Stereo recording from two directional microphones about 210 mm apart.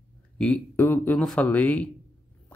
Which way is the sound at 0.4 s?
10° left (ahead or behind).